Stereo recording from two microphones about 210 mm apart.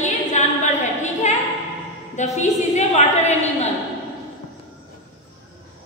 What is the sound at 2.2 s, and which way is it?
A woman's voice, 35° left (ahead or behind).